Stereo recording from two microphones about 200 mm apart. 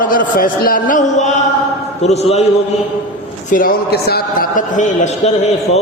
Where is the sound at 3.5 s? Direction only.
45° left (ahead or behind).